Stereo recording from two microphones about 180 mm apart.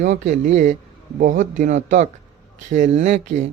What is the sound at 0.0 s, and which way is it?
Speech, 45° right (ahead or behind).